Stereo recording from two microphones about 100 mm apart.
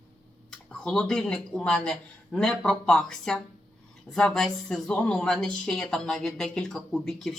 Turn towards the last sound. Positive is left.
turn(degrees=5)  # may be behind; listen again after turning